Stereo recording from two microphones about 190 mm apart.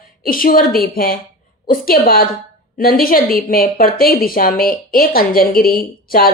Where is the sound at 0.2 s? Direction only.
50° left (ahead or behind).